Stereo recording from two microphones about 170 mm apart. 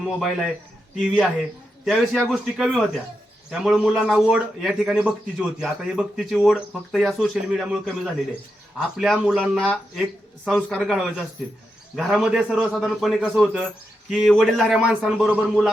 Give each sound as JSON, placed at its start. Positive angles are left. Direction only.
{"t": 0.0, "sound": "a man's voice", "side_deg": 0}